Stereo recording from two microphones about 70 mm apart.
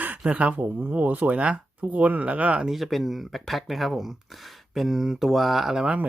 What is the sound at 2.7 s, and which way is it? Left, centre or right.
Speech, centre.